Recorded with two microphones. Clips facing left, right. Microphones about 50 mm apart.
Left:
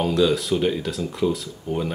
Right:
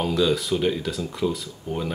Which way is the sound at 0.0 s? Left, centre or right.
Centre.